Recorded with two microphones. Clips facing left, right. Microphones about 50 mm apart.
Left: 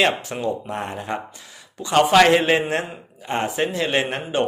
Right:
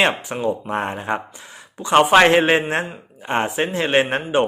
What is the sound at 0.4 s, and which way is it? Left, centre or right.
Speech, right.